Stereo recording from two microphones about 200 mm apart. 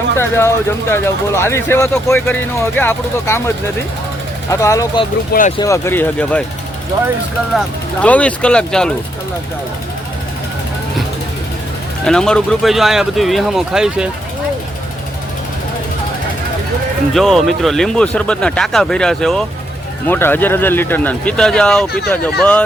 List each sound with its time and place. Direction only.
0.2 s speech: 10° left (ahead or behind)
4.5 s speech: 15° left (ahead or behind)
5.3 s speech: 40° left (ahead or behind)
5.5 s speech: 15° left (ahead or behind)
8.0 s speech: 5° left (ahead or behind)
12.0 s speech: 5° left (ahead or behind)
17.2 s speech: centre (ahead or behind)